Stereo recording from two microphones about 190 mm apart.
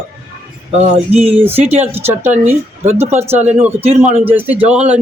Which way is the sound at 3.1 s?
10° right (ahead or behind).